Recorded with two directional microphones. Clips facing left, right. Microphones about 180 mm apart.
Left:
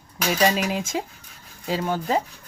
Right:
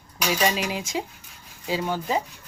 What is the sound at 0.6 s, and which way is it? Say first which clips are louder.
Speech: left 3 dB; 50° left (ahead or behind).